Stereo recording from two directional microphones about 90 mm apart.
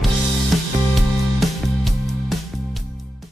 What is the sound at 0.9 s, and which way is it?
Music, centre (ahead or behind).